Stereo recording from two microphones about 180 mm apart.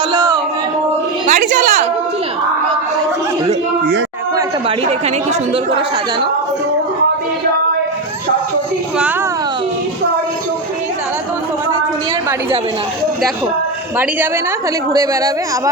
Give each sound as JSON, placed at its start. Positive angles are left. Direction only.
{"t": 1.3, "sound": "a sound", "side_deg": -45}
{"t": 4.9, "sound": "a woman's voice", "side_deg": -35}
{"t": 14.9, "sound": "speech", "side_deg": -20}